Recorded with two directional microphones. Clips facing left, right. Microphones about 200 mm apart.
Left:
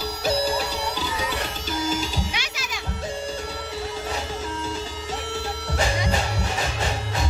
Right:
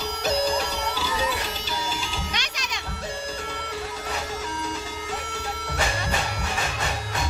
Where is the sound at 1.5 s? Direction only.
50° left (ahead or behind).